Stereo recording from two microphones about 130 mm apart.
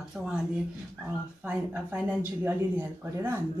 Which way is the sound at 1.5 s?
10° right (ahead or behind).